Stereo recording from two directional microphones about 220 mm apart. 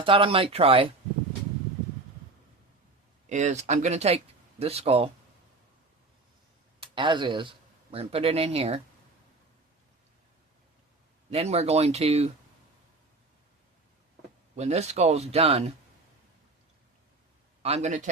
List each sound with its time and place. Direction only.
0.0 s speech: 25° right (ahead or behind)
3.2 s speech: 30° right (ahead or behind)
6.7 s speech: 20° right (ahead or behind)
11.3 s speech: 30° right (ahead or behind)
14.5 s speech: 30° right (ahead or behind)
17.6 s speech: 30° right (ahead or behind)